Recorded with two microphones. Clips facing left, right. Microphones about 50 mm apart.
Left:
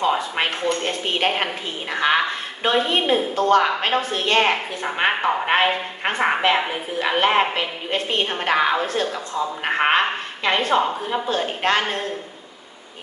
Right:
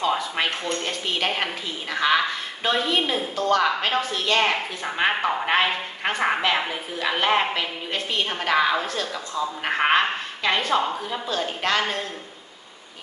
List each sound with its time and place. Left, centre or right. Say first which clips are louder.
0.2 s a woman's voice: left 3 dB; left
4.4 s a woman's voice: left 3 dB; centre; by 11.8 s left